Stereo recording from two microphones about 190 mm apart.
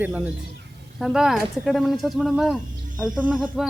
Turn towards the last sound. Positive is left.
turn(degrees=-5)  # may be behind; listen again after turning